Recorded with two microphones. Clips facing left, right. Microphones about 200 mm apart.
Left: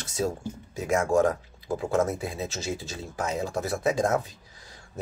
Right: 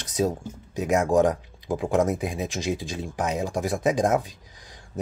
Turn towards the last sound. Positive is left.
turn(degrees=-15)  # may be behind; listen again after turning